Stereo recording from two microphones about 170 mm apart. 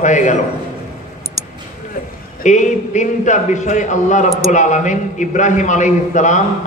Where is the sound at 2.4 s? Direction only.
45° left (ahead or behind).